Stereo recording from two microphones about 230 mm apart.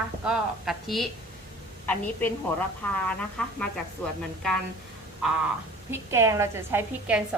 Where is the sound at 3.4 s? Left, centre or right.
Centre.